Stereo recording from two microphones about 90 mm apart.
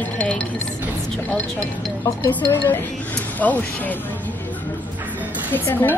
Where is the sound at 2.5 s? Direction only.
20° left (ahead or behind).